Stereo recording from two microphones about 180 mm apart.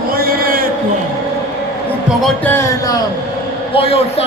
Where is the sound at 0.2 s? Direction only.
55° right (ahead or behind).